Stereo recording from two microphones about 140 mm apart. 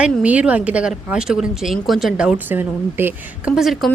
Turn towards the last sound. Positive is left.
turn(degrees=0)  # may be behind; listen again after turning